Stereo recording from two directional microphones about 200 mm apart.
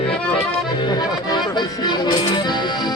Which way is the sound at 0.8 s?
20° left (ahead or behind).